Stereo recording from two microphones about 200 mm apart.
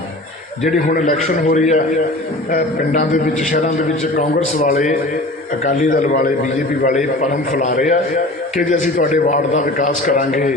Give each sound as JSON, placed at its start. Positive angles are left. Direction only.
{"t": 0.6, "sound": "a man's voice", "side_deg": 40}